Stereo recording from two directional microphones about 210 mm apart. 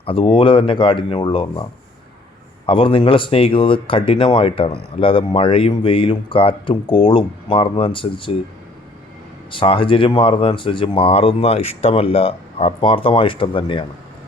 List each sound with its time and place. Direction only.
0.0 s speech: 25° left (ahead or behind)
2.6 s speech: 25° left (ahead or behind)
9.5 s speech: 25° left (ahead or behind)